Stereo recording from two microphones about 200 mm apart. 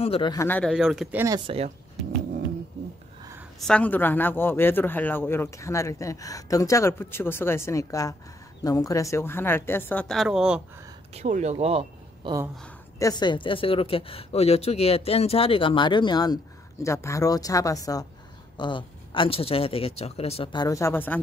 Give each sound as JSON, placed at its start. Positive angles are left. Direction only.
{"t": 0.0, "sound": "speech", "side_deg": 25}
{"t": 1.5, "sound": "speech", "side_deg": -30}
{"t": 3.5, "sound": "speech", "side_deg": 5}
{"t": 11.1, "sound": "speech", "side_deg": -35}
{"t": 13.0, "sound": "a woman's voice", "side_deg": 20}
{"t": 20.6, "sound": "speech", "side_deg": 15}